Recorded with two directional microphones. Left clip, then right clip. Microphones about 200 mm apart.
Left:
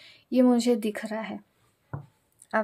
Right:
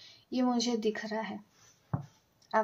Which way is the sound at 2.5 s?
45° left (ahead or behind).